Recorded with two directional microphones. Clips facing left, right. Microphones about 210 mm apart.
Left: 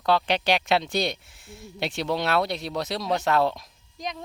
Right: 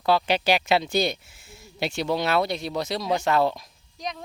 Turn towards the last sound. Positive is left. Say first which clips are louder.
# even
turn(degrees=0)  # may be behind; listen again after turning